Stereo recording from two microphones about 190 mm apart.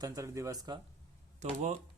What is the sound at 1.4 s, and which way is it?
Speech, 35° right (ahead or behind).